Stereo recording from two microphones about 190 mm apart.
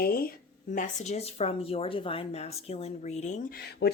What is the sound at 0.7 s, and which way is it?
A woman's voice, 40° left (ahead or behind).